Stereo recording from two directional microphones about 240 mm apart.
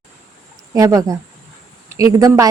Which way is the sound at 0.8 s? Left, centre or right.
Centre.